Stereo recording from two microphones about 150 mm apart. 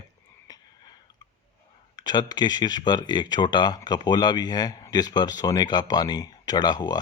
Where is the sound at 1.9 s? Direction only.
25° left (ahead or behind).